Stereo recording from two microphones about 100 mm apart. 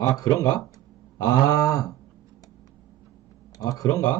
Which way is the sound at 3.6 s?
40° left (ahead or behind).